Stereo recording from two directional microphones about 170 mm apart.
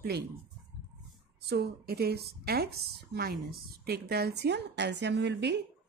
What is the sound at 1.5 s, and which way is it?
Speech, 65° right (ahead or behind).